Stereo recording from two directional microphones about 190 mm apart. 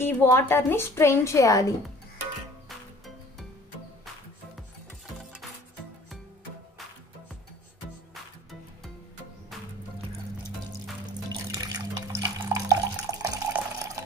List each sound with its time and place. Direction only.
0.0 s a woman's voice: 10° left (ahead or behind)
8.1 s music: centre (ahead or behind)
11.5 s water: 20° right (ahead or behind)